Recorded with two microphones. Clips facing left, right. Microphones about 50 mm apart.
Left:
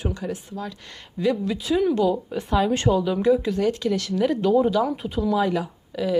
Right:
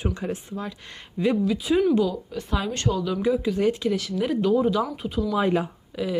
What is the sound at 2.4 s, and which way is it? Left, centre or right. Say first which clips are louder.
Speech: left 6 dB; centre.